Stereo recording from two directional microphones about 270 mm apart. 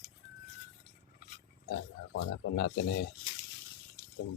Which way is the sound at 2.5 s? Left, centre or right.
Left.